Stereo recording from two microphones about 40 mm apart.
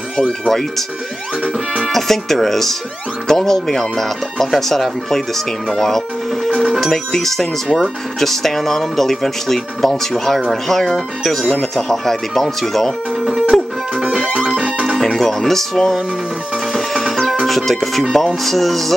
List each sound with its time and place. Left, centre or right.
0.5 s speech: centre
1.9 s speech: centre
6.5 s speech: right
6.8 s speech: centre
13.5 s music: centre
13.9 s music: right
15.0 s speech: centre
17.5 s speech: centre